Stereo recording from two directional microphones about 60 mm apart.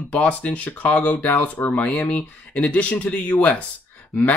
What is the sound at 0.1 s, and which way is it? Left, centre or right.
Speech, left.